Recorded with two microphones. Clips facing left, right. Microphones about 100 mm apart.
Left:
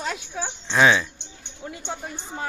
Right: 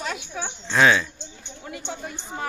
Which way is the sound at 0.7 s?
15° left (ahead or behind).